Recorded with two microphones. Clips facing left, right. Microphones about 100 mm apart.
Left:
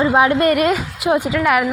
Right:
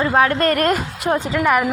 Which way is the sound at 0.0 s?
15° left (ahead or behind).